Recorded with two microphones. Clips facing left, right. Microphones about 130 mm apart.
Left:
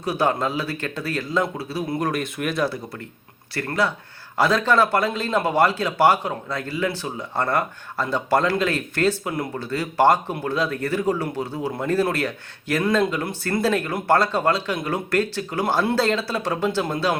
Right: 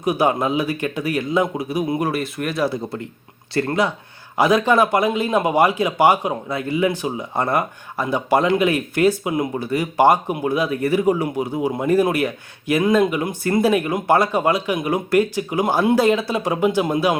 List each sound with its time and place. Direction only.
0.0 s speech: 15° right (ahead or behind)
2.6 s speech: 20° right (ahead or behind)